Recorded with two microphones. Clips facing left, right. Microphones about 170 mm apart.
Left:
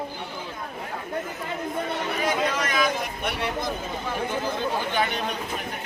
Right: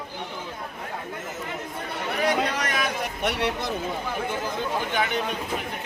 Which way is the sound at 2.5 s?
65° right (ahead or behind).